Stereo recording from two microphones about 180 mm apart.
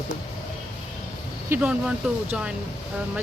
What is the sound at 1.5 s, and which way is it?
Speech, 5° right (ahead or behind).